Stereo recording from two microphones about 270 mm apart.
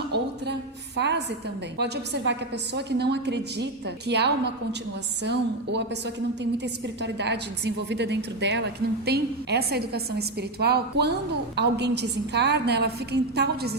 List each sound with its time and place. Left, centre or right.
0.9 s a woman's voice: right